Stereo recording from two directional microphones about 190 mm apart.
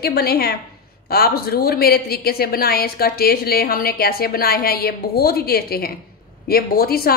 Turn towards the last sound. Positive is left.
turn(degrees=55)  # may be behind; listen again after turning